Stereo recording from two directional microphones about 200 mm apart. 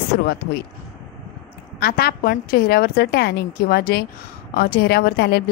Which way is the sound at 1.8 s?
50° left (ahead or behind).